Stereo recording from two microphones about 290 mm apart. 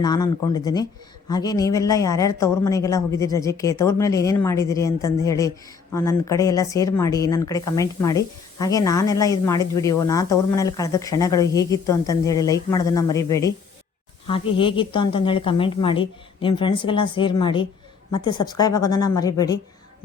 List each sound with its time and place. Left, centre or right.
0.0 s speech: centre
14.5 s speech: centre
18.8 s speech: left
19.1 s speech: centre